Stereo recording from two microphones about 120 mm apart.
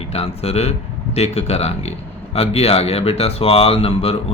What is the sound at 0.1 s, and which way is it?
Speech, 55° left (ahead or behind).